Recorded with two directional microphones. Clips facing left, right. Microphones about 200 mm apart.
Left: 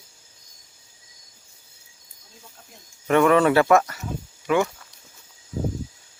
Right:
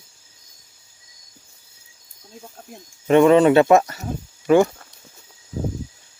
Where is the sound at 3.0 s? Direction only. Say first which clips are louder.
Right 5 dB; 20° right (ahead or behind).